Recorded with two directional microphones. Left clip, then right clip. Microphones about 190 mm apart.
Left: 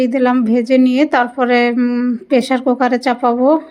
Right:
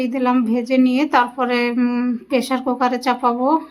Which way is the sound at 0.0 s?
20° left (ahead or behind).